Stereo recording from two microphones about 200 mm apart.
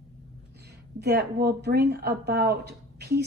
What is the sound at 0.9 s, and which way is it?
Speech, 50° right (ahead or behind).